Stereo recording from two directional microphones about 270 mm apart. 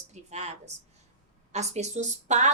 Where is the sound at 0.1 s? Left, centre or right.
Right.